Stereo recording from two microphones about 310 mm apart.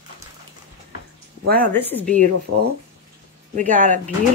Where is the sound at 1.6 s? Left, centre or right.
Centre.